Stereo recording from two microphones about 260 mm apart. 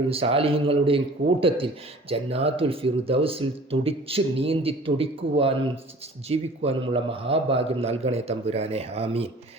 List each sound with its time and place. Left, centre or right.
0.1 s a man's voice: right